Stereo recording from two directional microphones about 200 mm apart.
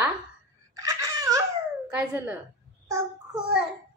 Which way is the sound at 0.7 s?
15° right (ahead or behind).